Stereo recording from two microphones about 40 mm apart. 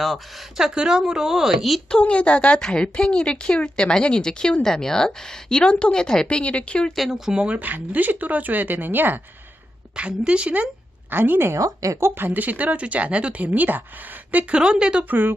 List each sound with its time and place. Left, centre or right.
0.5 s speech: centre
1.9 s a woman's voice: left
6.3 s a woman's voice: left
6.9 s speech: centre
7.6 s speech: right
9.9 s a woman's voice: right
11.1 s a woman's voice: right
12.4 s speech: right
14.5 s a woman's voice: right
15.1 s speech: right